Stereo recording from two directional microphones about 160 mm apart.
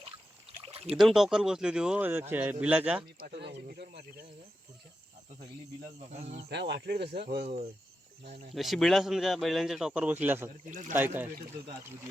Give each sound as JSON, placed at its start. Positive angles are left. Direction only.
{"t": 0.6, "sound": "a sound", "side_deg": -40}
{"t": 0.9, "sound": "a man's voice", "side_deg": 0}
{"t": 3.2, "sound": "speech", "side_deg": -80}
{"t": 6.1, "sound": "speech", "side_deg": -45}
{"t": 6.5, "sound": "speech", "side_deg": -90}
{"t": 8.5, "sound": "speech", "side_deg": 0}
{"t": 10.7, "sound": "speech", "side_deg": -55}
{"t": 10.9, "sound": "a man's voice", "side_deg": -10}